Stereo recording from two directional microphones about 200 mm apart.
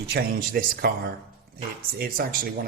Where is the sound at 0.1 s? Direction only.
45° right (ahead or behind).